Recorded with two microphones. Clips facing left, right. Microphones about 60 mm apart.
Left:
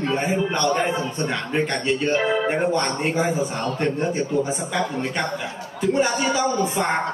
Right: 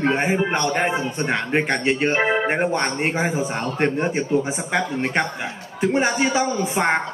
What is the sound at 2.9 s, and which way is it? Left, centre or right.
Speech, right.